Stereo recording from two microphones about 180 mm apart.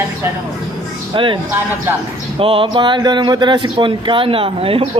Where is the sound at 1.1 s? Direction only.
30° right (ahead or behind).